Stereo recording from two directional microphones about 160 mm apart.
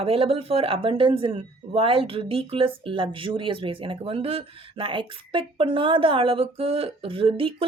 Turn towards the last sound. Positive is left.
turn(degrees=-35)  # may be behind; listen again after turning